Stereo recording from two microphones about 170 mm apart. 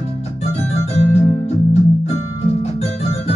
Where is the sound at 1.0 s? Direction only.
35° left (ahead or behind).